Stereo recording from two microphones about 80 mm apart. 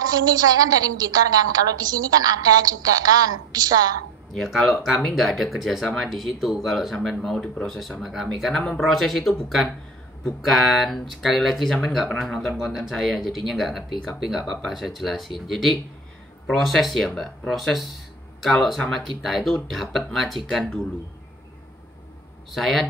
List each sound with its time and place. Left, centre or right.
0.0 s a woman's voice: right
4.3 s speech: centre
22.5 s speech: centre